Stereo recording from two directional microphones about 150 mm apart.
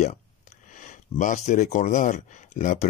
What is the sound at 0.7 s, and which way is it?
Speech, 55° left (ahead or behind).